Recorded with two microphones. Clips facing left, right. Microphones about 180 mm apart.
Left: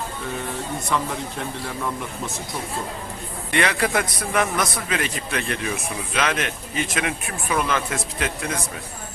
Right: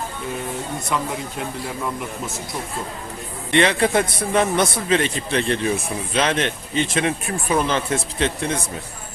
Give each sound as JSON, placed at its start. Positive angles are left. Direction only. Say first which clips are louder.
{"t": 3.5, "sound": "a man's voice", "louder": "right 5 dB", "side_deg": -25}